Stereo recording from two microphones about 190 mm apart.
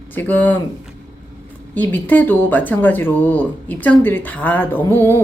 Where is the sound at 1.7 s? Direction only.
10° left (ahead or behind).